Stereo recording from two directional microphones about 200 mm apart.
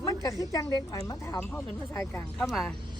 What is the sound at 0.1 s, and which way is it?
A woman's voice, 20° left (ahead or behind).